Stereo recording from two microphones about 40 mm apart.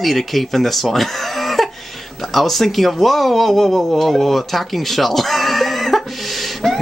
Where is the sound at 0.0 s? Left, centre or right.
Centre.